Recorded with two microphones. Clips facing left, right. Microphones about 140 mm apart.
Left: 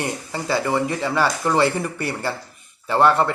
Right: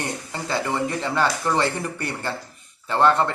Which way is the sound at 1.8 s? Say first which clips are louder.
Left 3 dB; 5° left (ahead or behind).